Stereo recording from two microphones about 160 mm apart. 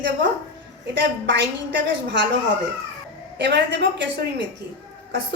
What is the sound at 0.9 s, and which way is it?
A woman's voice, 90° right.